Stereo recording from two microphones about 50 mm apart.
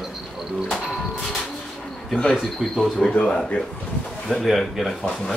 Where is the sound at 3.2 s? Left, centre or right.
Centre.